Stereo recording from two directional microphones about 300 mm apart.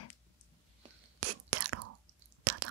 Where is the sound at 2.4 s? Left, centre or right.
Right.